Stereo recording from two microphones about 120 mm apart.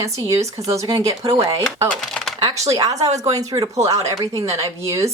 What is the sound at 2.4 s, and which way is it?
Speech, 30° right (ahead or behind).